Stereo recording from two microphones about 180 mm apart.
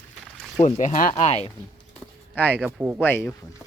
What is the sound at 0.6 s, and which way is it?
Speech, 45° left (ahead or behind).